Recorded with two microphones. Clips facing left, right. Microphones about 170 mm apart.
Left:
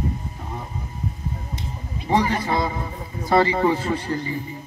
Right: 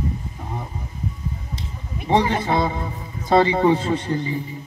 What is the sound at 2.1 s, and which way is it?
Speech, 25° right (ahead or behind).